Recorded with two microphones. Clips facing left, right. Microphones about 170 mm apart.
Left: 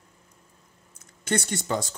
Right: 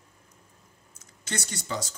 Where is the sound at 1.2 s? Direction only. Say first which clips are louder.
Left 8 dB; 55° left (ahead or behind).